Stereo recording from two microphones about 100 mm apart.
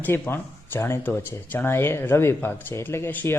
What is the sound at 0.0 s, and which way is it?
Speech, 20° left (ahead or behind).